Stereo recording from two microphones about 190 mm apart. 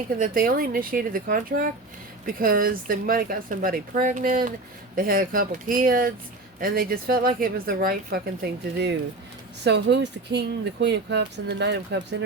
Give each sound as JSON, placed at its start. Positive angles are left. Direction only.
{"t": 0.2, "sound": "speech", "side_deg": -50}
{"t": 9.6, "sound": "speech", "side_deg": -65}